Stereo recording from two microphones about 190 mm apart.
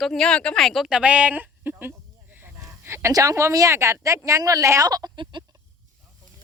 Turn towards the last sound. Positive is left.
turn(degrees=-20)  # may be behind; listen again after turning